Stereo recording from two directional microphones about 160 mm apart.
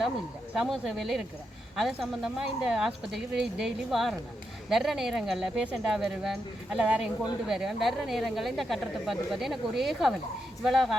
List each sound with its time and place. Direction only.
0.5 s speech: centre (ahead or behind)